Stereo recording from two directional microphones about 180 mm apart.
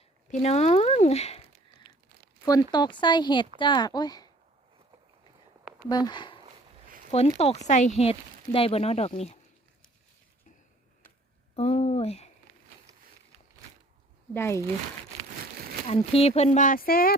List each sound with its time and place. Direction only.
0.3 s speech: 35° left (ahead or behind)
2.4 s speech: 20° left (ahead or behind)
5.9 s speech: 25° left (ahead or behind)
6.8 s a sound: 50° right (ahead or behind)
7.3 s speech: 35° left (ahead or behind)
11.5 s speech: 35° left (ahead or behind)
14.3 s speech: 15° left (ahead or behind)
15.9 s speech: 35° left (ahead or behind); by 17.2 s 55° left (ahead or behind)